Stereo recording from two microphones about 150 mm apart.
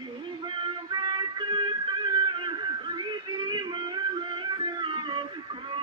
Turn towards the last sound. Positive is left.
turn(degrees=-30)  # may be behind; listen again after turning